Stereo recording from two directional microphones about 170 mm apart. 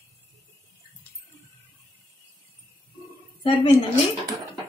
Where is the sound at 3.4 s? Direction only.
30° left (ahead or behind).